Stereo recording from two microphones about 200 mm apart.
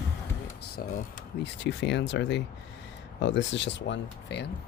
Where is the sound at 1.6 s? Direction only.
60° left (ahead or behind).